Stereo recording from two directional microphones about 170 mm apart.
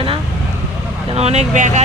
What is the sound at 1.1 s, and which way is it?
Speech, 40° right (ahead or behind).